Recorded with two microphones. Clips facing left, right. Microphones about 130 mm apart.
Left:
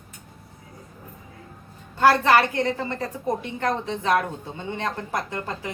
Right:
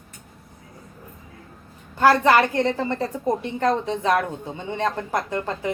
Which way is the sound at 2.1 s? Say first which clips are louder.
Right 2 dB; 20° right (ahead or behind).